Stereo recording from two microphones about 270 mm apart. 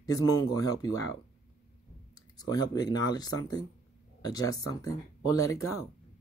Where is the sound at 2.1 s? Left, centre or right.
Centre.